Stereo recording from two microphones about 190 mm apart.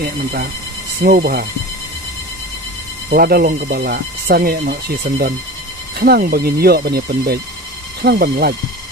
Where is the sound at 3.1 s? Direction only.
55° right (ahead or behind).